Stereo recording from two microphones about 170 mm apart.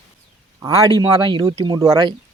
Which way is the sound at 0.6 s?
25° right (ahead or behind).